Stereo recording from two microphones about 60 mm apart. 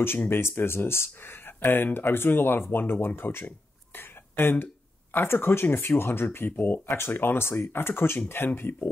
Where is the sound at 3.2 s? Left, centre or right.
Left.